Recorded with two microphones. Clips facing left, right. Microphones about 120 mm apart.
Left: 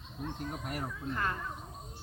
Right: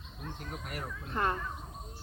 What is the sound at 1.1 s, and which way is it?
Speech, 25° right (ahead or behind).